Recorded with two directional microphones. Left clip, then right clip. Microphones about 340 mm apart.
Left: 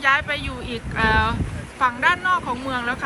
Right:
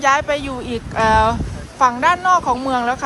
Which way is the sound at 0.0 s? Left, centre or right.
Centre.